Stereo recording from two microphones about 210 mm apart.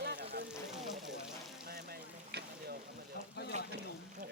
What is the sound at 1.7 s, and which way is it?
Boat, 50° right (ahead or behind).